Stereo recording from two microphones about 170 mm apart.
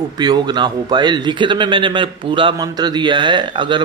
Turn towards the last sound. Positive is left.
turn(degrees=-30)  # may be behind; listen again after turning